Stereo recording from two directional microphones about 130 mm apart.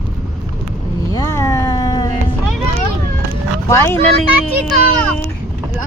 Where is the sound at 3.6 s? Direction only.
20° left (ahead or behind).